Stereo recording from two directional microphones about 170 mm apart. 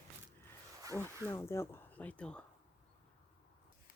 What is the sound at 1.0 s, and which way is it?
Speech, 15° left (ahead or behind).